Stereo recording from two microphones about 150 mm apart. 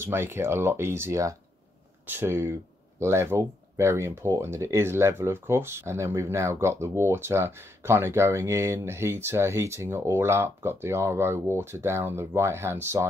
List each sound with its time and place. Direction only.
0.0 s speech: 15° right (ahead or behind)